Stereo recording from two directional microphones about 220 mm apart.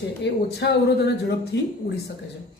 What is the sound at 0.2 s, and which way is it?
A woman's voice, 50° left (ahead or behind).